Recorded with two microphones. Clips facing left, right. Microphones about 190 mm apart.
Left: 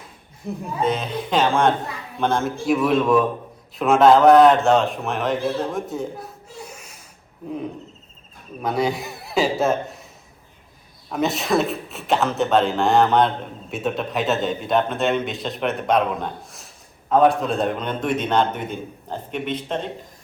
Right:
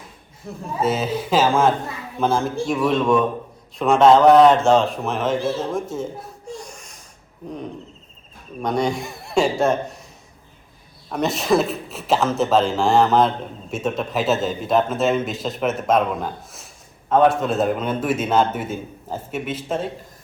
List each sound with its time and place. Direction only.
0.4 s speech: 15° left (ahead or behind)
0.8 s speech: 5° right (ahead or behind)
5.9 s a sound: centre (ahead or behind)
8.6 s a man's voice: 5° left (ahead or behind)
11.1 s speech: centre (ahead or behind)